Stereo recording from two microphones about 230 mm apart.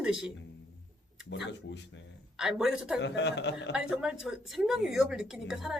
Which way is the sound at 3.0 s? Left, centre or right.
Left.